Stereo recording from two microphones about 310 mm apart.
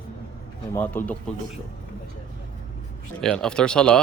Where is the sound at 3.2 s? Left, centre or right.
Centre.